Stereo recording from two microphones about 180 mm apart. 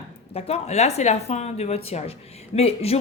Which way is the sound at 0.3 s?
35° left (ahead or behind).